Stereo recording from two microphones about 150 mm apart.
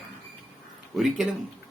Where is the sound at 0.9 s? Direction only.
Centre (ahead or behind).